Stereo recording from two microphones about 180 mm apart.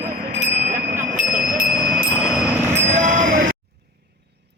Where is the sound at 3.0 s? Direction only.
45° right (ahead or behind).